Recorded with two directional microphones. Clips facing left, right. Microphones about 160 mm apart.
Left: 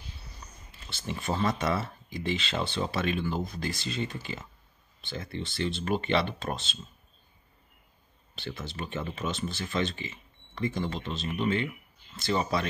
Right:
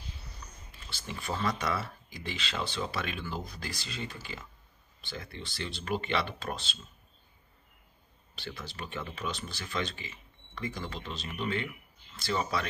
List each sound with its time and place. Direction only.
0.7 s a sound: 20° left (ahead or behind)
1.1 s speech: 25° left (ahead or behind)
8.5 s speech: 25° left (ahead or behind)